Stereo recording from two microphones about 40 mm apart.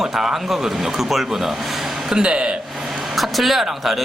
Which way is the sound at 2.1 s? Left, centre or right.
Right.